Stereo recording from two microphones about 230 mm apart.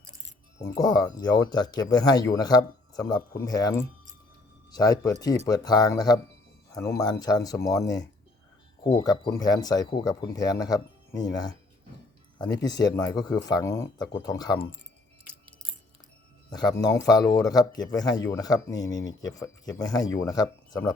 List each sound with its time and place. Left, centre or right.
0.6 s speech: centre
12.6 s speech: centre
16.5 s speech: centre